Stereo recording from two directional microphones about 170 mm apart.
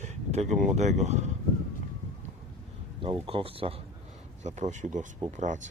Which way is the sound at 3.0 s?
30° right (ahead or behind).